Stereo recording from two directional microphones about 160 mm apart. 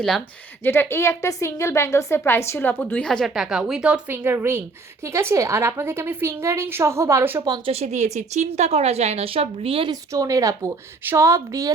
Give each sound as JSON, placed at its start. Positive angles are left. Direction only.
{"t": 0.6, "sound": "a woman's voice", "side_deg": 15}
{"t": 7.7, "sound": "speech", "side_deg": -45}
{"t": 9.9, "sound": "a woman's voice", "side_deg": -20}